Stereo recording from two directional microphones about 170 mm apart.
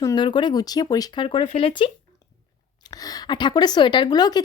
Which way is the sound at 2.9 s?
20° left (ahead or behind).